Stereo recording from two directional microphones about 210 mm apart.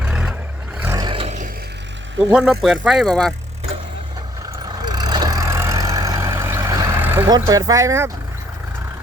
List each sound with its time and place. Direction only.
0.0 s vehicle: 5° right (ahead or behind)
0.8 s vehicle: 15° right (ahead or behind)
2.1 s speech: 10° right (ahead or behind)
2.4 s speech: centre (ahead or behind)
4.9 s vehicle: 20° right (ahead or behind)